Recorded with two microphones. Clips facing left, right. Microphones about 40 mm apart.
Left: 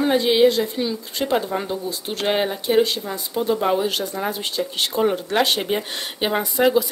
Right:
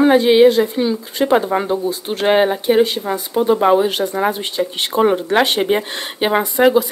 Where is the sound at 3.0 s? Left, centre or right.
Right.